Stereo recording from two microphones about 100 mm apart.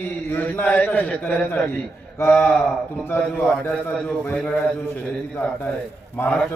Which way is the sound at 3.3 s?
20° left (ahead or behind).